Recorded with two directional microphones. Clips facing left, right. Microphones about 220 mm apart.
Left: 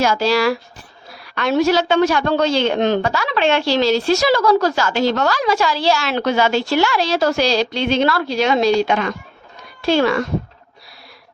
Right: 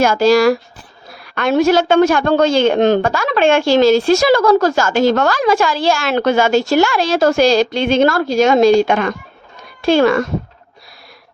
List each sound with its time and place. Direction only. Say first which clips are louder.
0.0 s a woman's voice: right 5 dB; 50° right (ahead or behind)